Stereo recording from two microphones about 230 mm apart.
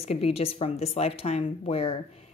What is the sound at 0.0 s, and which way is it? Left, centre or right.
Speech, left.